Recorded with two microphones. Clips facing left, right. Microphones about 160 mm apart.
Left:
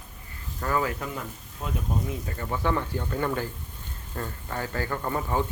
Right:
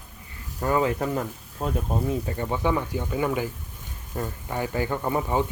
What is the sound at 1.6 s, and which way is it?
Speech, 40° right (ahead or behind).